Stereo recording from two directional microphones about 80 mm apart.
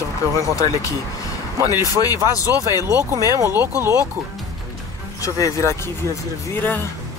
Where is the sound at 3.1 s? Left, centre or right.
Right.